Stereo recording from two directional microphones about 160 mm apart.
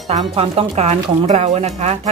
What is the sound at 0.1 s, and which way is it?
Speech, 40° right (ahead or behind).